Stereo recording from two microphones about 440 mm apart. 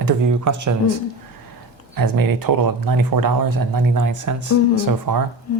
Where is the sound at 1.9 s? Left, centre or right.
Right.